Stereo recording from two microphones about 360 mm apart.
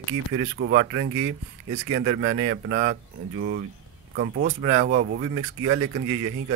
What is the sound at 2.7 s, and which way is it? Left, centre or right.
Speech, right.